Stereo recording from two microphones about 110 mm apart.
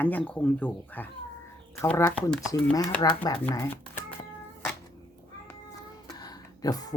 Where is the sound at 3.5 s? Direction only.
25° left (ahead or behind).